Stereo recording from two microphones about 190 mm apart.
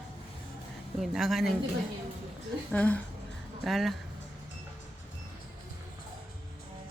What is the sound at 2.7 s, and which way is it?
Speech, 10° left (ahead or behind).